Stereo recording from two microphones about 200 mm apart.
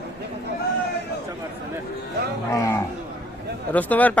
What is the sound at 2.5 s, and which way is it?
A man's voice, 15° left (ahead or behind).